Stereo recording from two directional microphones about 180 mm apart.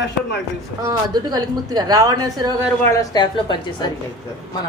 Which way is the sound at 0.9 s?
20° right (ahead or behind).